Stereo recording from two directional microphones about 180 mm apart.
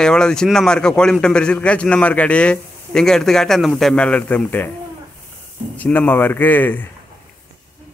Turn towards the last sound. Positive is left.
turn(degrees=10)  # may be behind; listen again after turning